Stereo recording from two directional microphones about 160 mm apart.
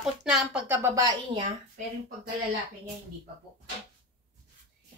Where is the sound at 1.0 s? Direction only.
20° right (ahead or behind).